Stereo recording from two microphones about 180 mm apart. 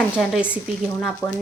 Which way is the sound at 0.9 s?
5° left (ahead or behind).